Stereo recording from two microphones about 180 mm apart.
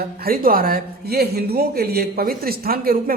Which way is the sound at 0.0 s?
55° right (ahead or behind).